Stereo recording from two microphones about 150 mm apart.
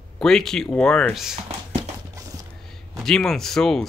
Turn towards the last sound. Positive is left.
turn(degrees=5)  # may be behind; listen again after turning